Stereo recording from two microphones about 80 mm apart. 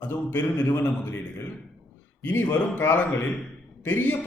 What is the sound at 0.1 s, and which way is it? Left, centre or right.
Speech, left.